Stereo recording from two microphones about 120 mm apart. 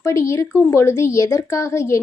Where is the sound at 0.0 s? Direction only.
25° left (ahead or behind).